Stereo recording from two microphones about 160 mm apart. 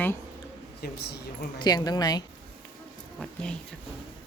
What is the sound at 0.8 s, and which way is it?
Speech, 90° left.